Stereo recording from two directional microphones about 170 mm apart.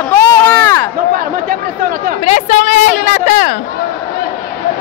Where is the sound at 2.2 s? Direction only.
45° left (ahead or behind).